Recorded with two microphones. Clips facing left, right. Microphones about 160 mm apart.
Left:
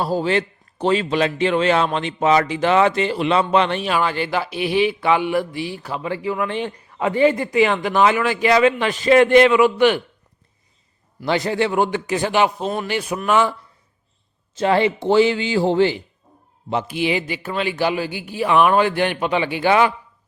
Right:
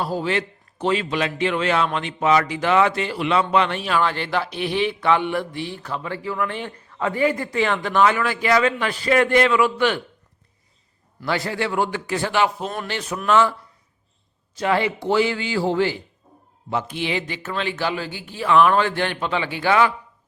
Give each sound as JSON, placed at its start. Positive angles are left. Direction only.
{"t": 0.0, "sound": "speech", "side_deg": 30}
{"t": 4.0, "sound": "mantra", "side_deg": 5}
{"t": 7.4, "sound": "speech", "side_deg": 15}
{"t": 11.3, "sound": "speech", "side_deg": 20}
{"t": 12.8, "sound": "mantra", "side_deg": 10}
{"t": 14.5, "sound": "speech", "side_deg": 25}
{"t": 16.8, "sound": "mantra", "side_deg": 10}